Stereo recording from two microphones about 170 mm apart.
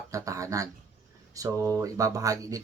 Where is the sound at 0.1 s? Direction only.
20° right (ahead or behind).